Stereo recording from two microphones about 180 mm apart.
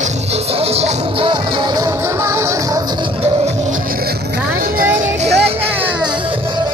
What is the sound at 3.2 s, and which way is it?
Music, 40° right (ahead or behind).